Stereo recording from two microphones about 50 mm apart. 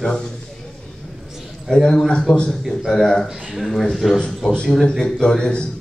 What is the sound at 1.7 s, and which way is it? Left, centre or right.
A man's voice, centre.